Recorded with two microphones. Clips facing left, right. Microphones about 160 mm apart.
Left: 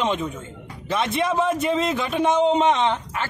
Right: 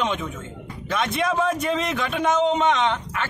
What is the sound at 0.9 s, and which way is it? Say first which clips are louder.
A man's voice: left 1 dB; 25° left (ahead or behind).